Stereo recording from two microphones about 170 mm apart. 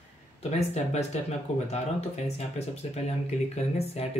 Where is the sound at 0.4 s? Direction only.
40° left (ahead or behind).